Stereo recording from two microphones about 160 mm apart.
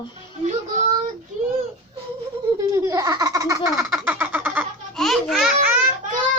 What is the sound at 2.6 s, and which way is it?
Laughter, 20° right (ahead or behind).